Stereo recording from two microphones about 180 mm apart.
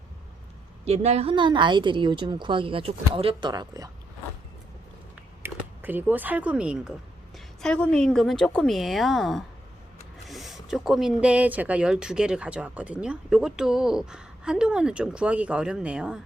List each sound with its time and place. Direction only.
0.9 s a woman's voice: 35° right (ahead or behind)
5.4 s speech: 10° right (ahead or behind)